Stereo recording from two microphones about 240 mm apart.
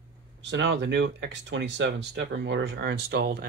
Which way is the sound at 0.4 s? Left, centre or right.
Right.